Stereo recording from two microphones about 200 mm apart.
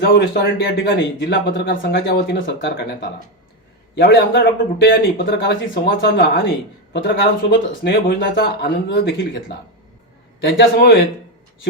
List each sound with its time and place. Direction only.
0.0 s speech: 55° left (ahead or behind)
2.6 s speech: 60° left (ahead or behind)
10.4 s speech: 55° left (ahead or behind)